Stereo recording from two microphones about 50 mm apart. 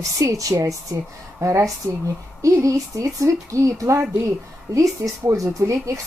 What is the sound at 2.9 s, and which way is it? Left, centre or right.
Speech, right.